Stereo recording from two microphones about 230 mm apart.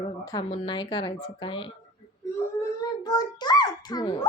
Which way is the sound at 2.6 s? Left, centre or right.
Centre.